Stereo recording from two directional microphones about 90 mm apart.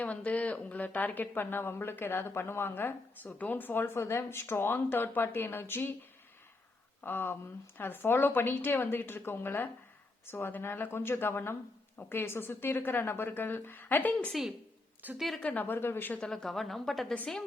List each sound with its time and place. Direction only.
0.0 s speech: 15° left (ahead or behind)
7.0 s speech: 25° left (ahead or behind)
15.0 s a woman's voice: 20° right (ahead or behind)
15.4 s speech: 20° left (ahead or behind)
16.2 s a woman's voice: 5° left (ahead or behind)